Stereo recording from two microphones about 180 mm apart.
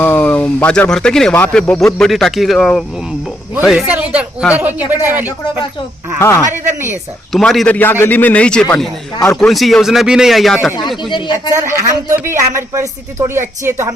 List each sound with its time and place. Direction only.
0.0 s a man's voice: 10° left (ahead or behind); by 4.9 s 10° right (ahead or behind)
6.1 s a man's voice: 15° left (ahead or behind)
7.3 s a man's voice: centre (ahead or behind)
11.5 s a man's voice: 15° right (ahead or behind)